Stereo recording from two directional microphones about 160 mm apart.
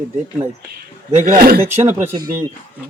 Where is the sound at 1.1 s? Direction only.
55° right (ahead or behind).